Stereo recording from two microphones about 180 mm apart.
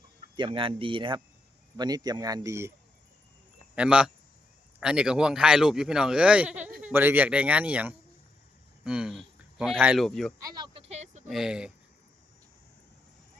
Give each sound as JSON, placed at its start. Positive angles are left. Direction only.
{"t": 0.3, "sound": "a man's voice", "side_deg": -30}
{"t": 3.8, "sound": "speech", "side_deg": -5}
{"t": 10.4, "sound": "a man's voice", "side_deg": -25}
{"t": 10.8, "sound": "a sound", "side_deg": -40}
{"t": 11.3, "sound": "speech", "side_deg": -5}